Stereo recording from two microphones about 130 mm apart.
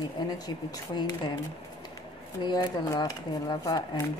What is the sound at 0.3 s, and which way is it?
Speech, 30° left (ahead or behind).